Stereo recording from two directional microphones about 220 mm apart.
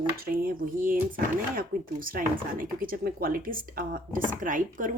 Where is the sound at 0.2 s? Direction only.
40° right (ahead or behind).